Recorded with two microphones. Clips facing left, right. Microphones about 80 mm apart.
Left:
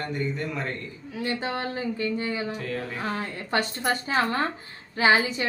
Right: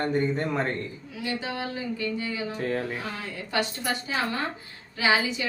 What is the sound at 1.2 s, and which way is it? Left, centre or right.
A woman's voice, left.